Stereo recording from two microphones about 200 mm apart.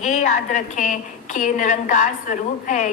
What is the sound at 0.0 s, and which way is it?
A woman's voice, 35° left (ahead or behind).